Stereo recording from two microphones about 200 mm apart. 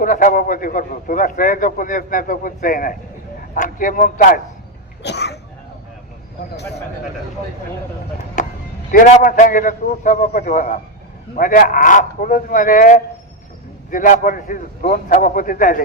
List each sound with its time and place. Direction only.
0.0 s a man's voice: 40° left (ahead or behind)
5.0 s speech: 55° left (ahead or behind)
8.4 s music: 40° left (ahead or behind)
8.9 s a man's voice: 40° left (ahead or behind)